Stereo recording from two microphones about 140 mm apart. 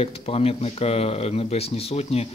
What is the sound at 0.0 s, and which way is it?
Speech, 45° left (ahead or behind).